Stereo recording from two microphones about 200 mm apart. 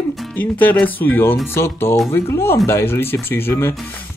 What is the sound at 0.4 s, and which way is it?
Speech, 10° left (ahead or behind).